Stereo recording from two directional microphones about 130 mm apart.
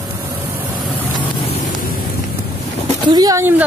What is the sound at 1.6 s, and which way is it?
Vehicle, 90° left.